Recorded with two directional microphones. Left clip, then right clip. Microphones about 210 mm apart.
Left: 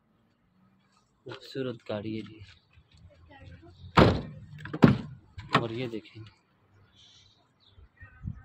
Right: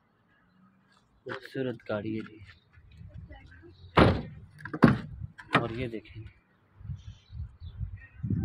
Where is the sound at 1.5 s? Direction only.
5° left (ahead or behind).